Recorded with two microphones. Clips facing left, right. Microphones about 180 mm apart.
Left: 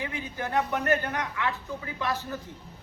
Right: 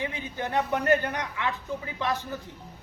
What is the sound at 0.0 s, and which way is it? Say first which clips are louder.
A man's voice: right 1 dB; 20° right (ahead or behind).